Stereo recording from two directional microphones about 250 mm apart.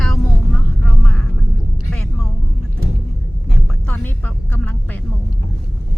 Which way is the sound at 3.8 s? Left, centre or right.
Centre.